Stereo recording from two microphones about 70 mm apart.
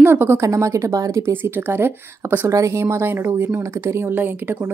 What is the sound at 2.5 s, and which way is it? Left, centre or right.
A woman's voice, right.